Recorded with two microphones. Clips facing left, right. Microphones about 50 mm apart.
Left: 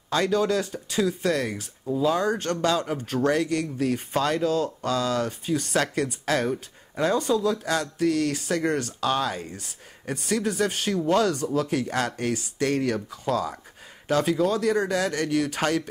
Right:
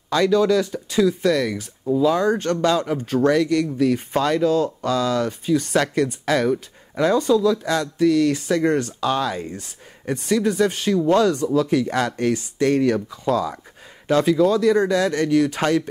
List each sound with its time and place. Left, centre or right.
0.1 s speech: right
7.2 s speech: left
7.4 s speech: right